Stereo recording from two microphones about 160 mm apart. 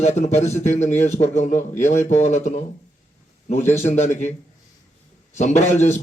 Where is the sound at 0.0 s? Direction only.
45° left (ahead or behind).